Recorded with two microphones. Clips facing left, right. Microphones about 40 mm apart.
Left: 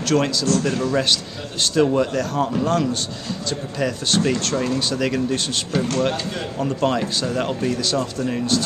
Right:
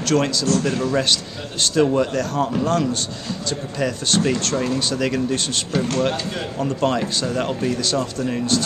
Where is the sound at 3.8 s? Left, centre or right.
Centre.